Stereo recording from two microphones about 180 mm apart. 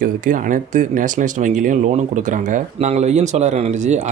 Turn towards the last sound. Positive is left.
turn(degrees=-35)  # may be behind; listen again after turning